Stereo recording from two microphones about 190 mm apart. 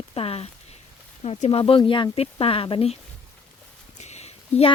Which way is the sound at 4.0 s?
35° left (ahead or behind).